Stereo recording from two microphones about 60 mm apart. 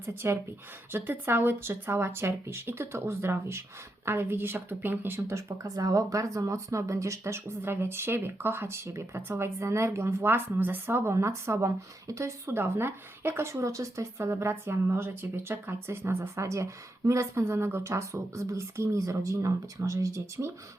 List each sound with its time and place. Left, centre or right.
0.0 s a woman's voice: right
5.6 s a woman's voice: right
10.9 s a woman's voice: right